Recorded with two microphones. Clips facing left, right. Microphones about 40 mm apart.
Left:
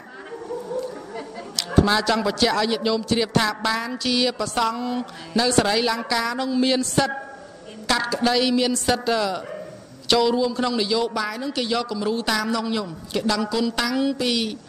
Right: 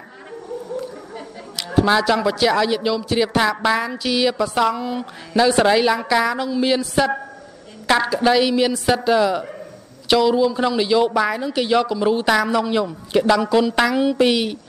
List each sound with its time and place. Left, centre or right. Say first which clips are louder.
1.6 s a man's voice: right 3 dB; centre